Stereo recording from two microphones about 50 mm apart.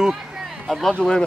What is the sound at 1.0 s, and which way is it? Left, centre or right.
Speech, centre.